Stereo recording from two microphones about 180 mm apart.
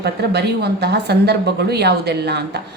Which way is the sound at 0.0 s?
65° right (ahead or behind).